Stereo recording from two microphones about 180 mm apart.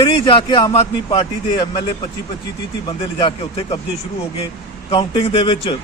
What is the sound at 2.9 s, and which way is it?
Speech, 30° left (ahead or behind).